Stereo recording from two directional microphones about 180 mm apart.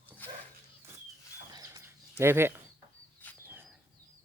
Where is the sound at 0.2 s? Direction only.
10° left (ahead or behind).